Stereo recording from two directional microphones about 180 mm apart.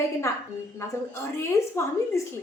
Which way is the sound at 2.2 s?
15° left (ahead or behind).